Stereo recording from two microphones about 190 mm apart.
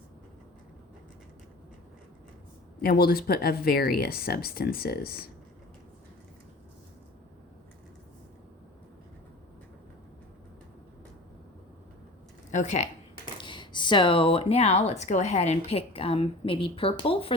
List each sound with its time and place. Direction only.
2.8 s speech: 50° left (ahead or behind)
12.5 s speech: 40° left (ahead or behind)
13.4 s speech: 25° left (ahead or behind)